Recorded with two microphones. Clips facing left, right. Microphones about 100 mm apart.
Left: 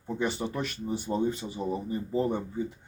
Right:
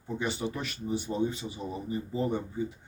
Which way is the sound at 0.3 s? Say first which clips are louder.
Left 2 dB; 45° left (ahead or behind).